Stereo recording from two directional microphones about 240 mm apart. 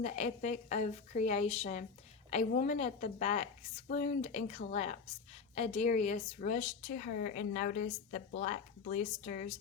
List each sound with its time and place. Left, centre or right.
0.0 s a woman's voice: left